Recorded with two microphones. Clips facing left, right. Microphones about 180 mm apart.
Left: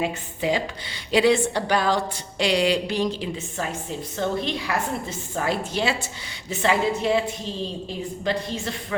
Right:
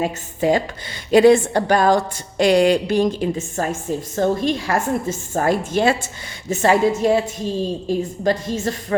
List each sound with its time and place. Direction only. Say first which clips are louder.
0.0 s a woman's voice: right 5 dB; 45° right (ahead or behind)